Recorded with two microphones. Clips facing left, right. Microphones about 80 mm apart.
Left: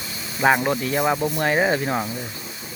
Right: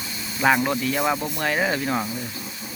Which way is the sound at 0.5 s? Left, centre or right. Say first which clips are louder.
Left 1 dB; centre.